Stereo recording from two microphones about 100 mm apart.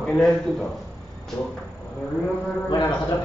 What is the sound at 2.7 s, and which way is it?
Speech, 45° left (ahead or behind).